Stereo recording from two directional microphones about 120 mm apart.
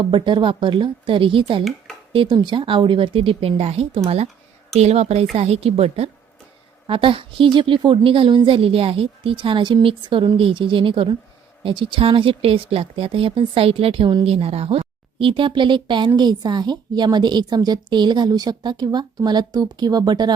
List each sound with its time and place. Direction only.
0.0 s a woman's voice: 40° right (ahead or behind); by 6.1 s 60° right (ahead or behind)
6.8 s speech: 45° right (ahead or behind)
14.3 s speech: 55° right (ahead or behind); by 20.3 s 35° right (ahead or behind)